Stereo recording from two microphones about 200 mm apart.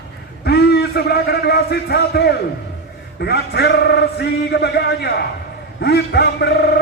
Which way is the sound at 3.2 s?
55° left (ahead or behind).